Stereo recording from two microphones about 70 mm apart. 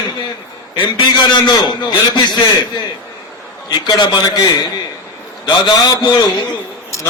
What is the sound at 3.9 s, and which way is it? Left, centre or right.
Speech, left.